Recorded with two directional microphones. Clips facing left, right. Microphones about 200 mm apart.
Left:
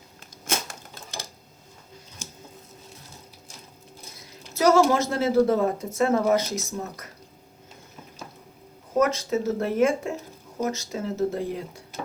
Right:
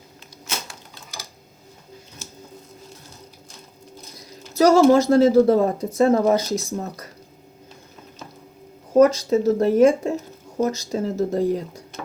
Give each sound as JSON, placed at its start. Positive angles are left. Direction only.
{"t": 4.5, "sound": "a woman's voice", "side_deg": -35}
{"t": 9.0, "sound": "a woman's voice", "side_deg": -35}